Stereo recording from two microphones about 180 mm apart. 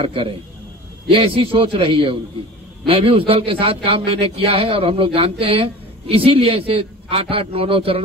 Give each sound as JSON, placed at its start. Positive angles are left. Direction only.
{"t": 0.0, "sound": "a man's voice", "side_deg": -30}